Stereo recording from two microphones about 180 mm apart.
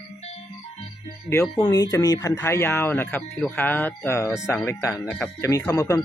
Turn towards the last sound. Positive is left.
turn(degrees=15)  # may be behind; listen again after turning